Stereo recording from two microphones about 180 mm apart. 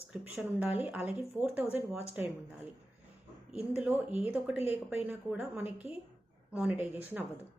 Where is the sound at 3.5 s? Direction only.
5° right (ahead or behind).